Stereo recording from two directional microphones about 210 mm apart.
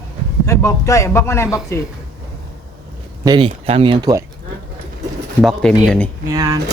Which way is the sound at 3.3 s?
25° right (ahead or behind).